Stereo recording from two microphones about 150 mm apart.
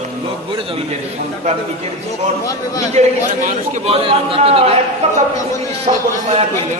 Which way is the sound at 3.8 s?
40° right (ahead or behind).